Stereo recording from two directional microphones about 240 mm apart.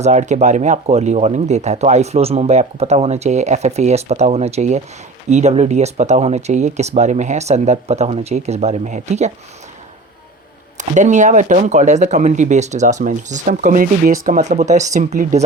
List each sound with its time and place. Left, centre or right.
0.0 s speech: right
10.8 s speech: right